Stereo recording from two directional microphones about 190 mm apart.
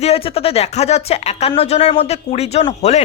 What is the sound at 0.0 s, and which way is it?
A woman's voice, 30° left (ahead or behind).